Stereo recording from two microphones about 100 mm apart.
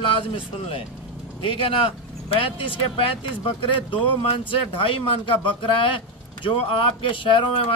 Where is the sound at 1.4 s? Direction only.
65° left (ahead or behind).